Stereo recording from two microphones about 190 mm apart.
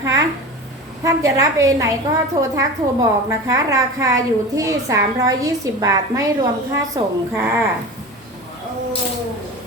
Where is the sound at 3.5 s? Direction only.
15° right (ahead or behind).